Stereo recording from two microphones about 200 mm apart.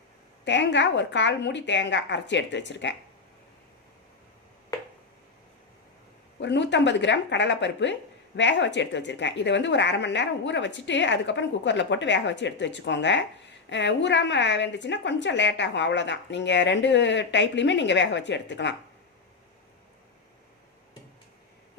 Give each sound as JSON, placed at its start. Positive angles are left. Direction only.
{"t": 0.4, "sound": "a woman's voice", "side_deg": 60}
{"t": 6.4, "sound": "a woman's voice", "side_deg": 60}